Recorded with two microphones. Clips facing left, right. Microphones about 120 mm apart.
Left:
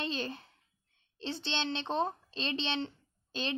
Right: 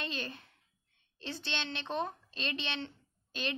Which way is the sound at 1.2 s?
30° left (ahead or behind).